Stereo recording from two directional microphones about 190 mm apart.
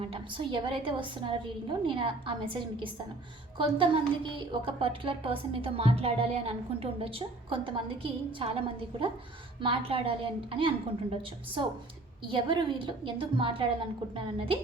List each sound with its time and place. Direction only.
0.0 s a woman's voice: 30° right (ahead or behind)